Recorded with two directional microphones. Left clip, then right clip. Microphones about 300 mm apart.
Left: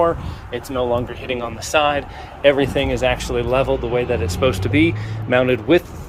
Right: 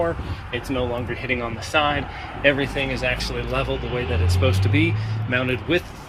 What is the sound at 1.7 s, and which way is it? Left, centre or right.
Speech, left.